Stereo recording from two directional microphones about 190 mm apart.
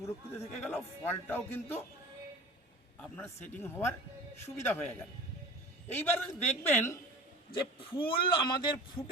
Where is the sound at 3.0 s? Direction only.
10° left (ahead or behind).